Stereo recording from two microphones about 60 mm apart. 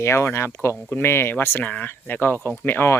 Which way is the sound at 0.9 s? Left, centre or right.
Left.